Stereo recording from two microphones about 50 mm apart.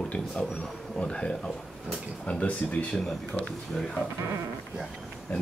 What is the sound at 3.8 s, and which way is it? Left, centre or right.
Speech, centre.